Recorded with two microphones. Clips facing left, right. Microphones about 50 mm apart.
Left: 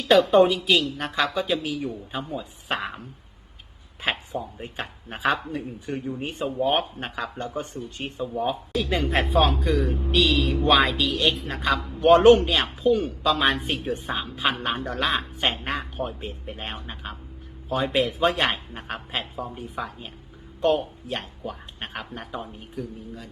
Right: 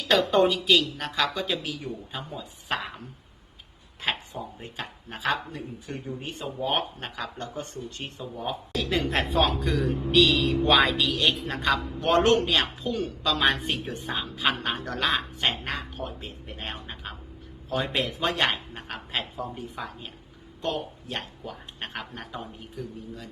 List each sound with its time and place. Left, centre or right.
0.1 s a woman's voice: centre
2.3 s speech: centre
4.0 s speech: centre
4.6 s speech: left; by 15.2 s centre
15.4 s a woman's voice: centre
21.1 s speech: centre